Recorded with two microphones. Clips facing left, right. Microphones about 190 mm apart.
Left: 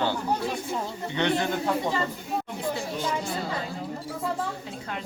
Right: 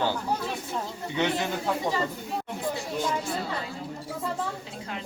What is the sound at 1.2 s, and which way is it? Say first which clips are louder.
Speech: left 2 dB; 5° right (ahead or behind).